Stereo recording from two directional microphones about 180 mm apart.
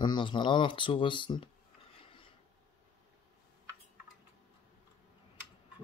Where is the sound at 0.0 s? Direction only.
25° left (ahead or behind).